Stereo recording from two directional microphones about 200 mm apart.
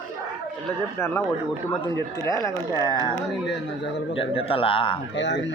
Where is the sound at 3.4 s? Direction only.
60° left (ahead or behind).